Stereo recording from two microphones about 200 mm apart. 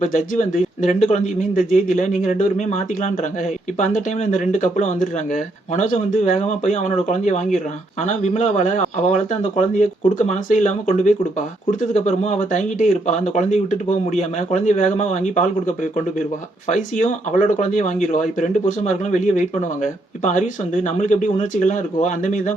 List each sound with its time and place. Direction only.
0.0 s speech: 40° left (ahead or behind)